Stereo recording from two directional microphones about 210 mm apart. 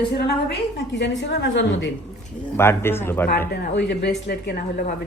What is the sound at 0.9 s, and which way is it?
Speech, 55° left (ahead or behind).